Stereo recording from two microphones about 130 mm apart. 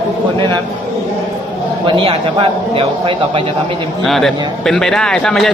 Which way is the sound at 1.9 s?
45° right (ahead or behind).